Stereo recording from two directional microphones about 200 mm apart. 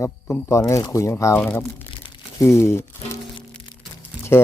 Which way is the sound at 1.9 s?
25° left (ahead or behind).